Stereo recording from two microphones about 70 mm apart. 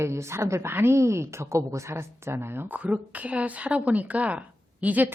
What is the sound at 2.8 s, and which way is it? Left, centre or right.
Speech, right.